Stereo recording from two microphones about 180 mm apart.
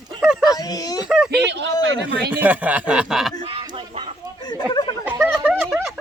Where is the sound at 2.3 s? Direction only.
10° right (ahead or behind).